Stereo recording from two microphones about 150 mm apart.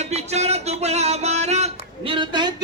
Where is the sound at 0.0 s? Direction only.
45° right (ahead or behind).